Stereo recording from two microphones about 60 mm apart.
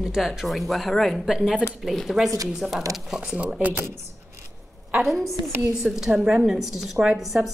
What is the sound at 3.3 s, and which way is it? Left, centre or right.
Speech, right.